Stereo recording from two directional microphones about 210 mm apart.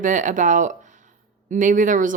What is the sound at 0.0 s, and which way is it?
A woman's voice, 35° right (ahead or behind).